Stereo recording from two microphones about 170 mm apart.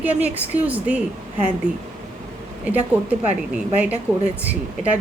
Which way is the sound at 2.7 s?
10° right (ahead or behind).